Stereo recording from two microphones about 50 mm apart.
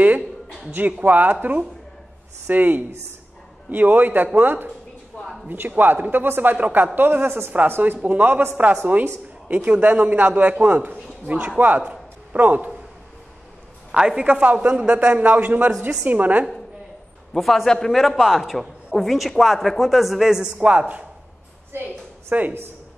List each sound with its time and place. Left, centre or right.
0.7 s a man's voice: right
5.2 s speech: centre
5.8 s a man's voice: right
8.0 s a man's voice: right
11.9 s bow-wow: right
13.9 s speech: centre
14.2 s a man's voice: right
17.3 s a man's voice: centre
21.7 s a woman's voice: right
22.3 s a man's voice: right